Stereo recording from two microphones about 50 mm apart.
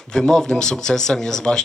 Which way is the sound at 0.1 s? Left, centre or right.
Centre.